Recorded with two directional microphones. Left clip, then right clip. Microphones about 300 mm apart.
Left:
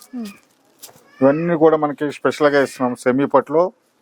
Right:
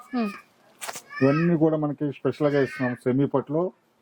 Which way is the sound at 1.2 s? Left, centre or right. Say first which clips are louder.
Left 8 dB; centre.